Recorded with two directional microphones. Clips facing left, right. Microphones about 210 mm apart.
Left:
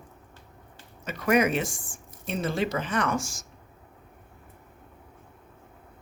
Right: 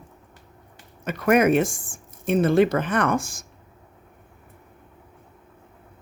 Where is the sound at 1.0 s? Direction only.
55° right (ahead or behind).